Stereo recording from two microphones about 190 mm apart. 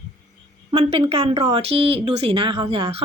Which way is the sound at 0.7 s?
35° right (ahead or behind).